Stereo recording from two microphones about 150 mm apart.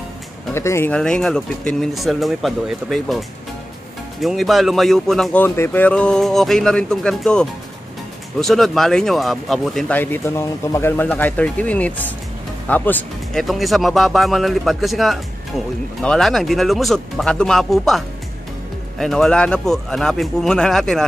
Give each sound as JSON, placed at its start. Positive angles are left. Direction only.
{"t": 0.6, "sound": "speech", "side_deg": 15}
{"t": 0.9, "sound": "speech", "side_deg": 5}
{"t": 9.9, "sound": "speech", "side_deg": 15}
{"t": 13.4, "sound": "speech", "side_deg": 0}